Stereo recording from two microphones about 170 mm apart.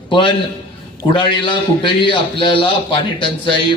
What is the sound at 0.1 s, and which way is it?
A man's voice, 30° left (ahead or behind).